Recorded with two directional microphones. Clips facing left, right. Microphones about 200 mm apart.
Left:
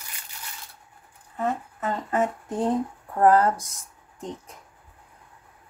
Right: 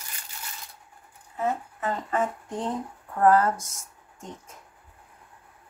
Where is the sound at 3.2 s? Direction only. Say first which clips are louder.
Left 2 dB; 35° left (ahead or behind).